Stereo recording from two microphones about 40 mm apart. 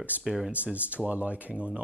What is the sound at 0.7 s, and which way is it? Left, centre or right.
Speech, right.